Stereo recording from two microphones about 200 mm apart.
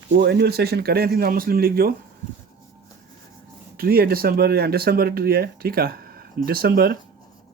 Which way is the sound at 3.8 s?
50° right (ahead or behind).